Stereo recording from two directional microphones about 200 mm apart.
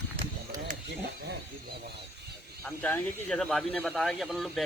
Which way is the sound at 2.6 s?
10° left (ahead or behind).